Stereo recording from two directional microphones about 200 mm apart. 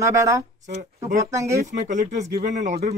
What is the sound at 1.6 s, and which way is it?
Speech, 40° right (ahead or behind).